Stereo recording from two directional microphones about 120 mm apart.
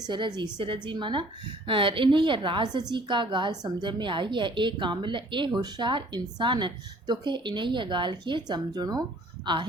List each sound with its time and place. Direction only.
0.0 s a woman's voice: 40° right (ahead or behind)